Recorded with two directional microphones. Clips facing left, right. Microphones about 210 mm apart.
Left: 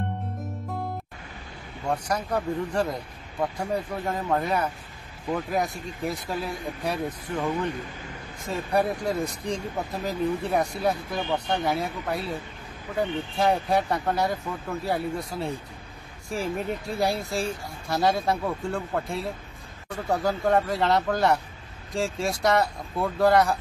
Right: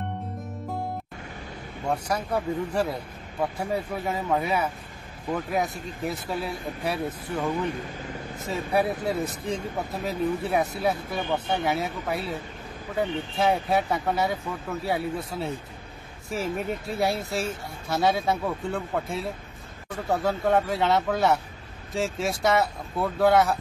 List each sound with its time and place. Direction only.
1.9 s speech: 10° right (ahead or behind)